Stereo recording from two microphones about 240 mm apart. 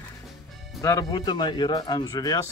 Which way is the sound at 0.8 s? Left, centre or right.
Centre.